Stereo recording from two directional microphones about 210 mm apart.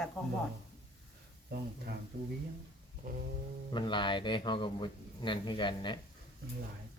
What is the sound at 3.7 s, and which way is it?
Speech, 20° left (ahead or behind).